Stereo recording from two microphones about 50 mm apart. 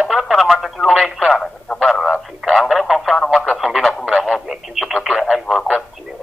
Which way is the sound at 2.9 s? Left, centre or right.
Centre.